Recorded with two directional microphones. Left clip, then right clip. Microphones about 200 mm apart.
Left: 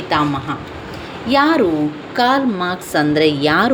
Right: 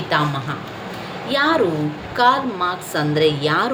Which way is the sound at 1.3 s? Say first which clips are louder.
Left 4 dB; 30° left (ahead or behind).